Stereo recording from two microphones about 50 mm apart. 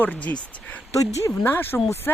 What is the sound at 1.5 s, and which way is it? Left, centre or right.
Speech, left.